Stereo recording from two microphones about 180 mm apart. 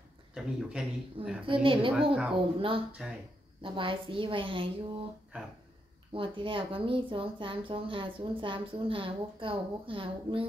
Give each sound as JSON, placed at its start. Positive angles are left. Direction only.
{"t": 0.3, "sound": "speech", "side_deg": -5}
{"t": 1.4, "sound": "speech", "side_deg": -30}
{"t": 3.0, "sound": "speech", "side_deg": -5}
{"t": 3.6, "sound": "speech", "side_deg": -25}
{"t": 5.3, "sound": "speech", "side_deg": -5}
{"t": 6.1, "sound": "speech", "side_deg": -30}